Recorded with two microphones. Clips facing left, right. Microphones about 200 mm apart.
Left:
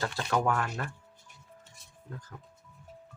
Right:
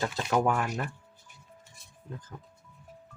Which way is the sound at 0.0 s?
15° right (ahead or behind).